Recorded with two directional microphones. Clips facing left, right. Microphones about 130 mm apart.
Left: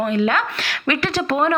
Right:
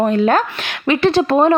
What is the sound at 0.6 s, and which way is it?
Speech, 25° right (ahead or behind).